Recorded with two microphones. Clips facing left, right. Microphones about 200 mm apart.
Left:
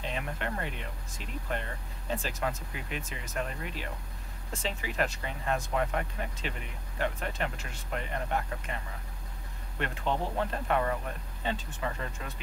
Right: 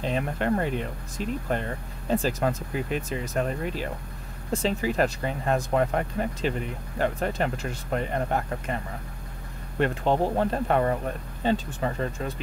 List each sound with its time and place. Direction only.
0.0 s speech: 40° right (ahead or behind)